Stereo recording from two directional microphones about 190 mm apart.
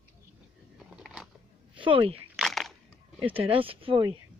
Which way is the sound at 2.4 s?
Centre (ahead or behind).